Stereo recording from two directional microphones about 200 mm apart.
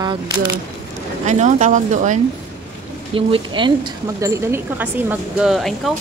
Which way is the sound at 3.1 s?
25° right (ahead or behind).